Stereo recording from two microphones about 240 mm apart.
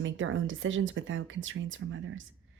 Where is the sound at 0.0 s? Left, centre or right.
Right.